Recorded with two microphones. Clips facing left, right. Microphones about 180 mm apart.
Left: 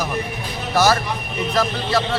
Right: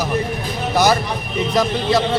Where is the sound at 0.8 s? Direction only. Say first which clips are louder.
Right 1 dB; 15° right (ahead or behind).